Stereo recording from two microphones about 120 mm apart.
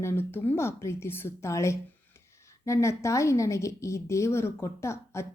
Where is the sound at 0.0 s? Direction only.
20° left (ahead or behind).